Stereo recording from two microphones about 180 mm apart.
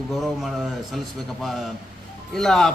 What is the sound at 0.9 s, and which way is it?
A man's voice, centre (ahead or behind).